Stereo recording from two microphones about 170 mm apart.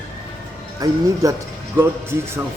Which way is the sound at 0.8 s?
20° right (ahead or behind).